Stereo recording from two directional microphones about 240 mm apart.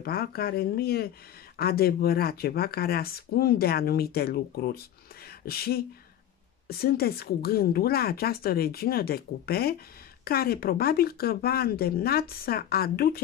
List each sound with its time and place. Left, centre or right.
0.0 s speech: left